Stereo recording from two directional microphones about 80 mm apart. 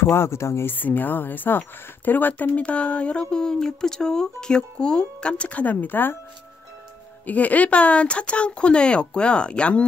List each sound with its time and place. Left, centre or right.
0.0 s speech: left
7.2 s speech: centre